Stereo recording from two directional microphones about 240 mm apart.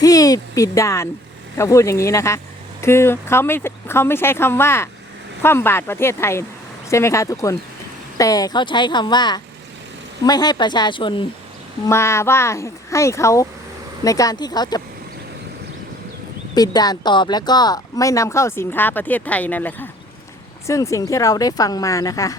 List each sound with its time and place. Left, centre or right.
0.0 s speech: centre
16.6 s speech: centre